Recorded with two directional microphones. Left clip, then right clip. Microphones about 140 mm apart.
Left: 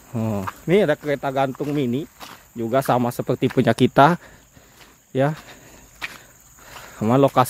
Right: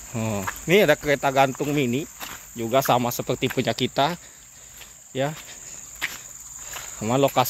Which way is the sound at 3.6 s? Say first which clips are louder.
Left 10 dB; 55° left (ahead or behind).